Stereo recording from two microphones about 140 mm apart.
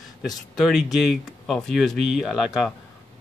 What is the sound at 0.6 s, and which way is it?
Speech, centre (ahead or behind).